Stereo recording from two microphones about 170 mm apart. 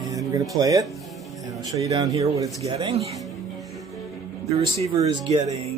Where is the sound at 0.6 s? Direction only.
20° right (ahead or behind).